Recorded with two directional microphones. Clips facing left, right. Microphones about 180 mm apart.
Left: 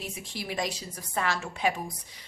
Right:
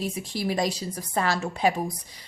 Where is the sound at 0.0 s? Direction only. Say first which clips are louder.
Right 9 dB; 35° right (ahead or behind).